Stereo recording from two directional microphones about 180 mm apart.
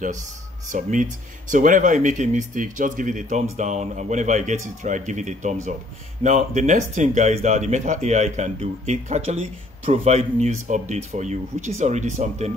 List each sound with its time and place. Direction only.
0.7 s speech: 45° right (ahead or behind)